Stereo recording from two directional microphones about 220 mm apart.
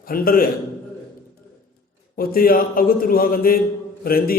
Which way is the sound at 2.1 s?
40° left (ahead or behind).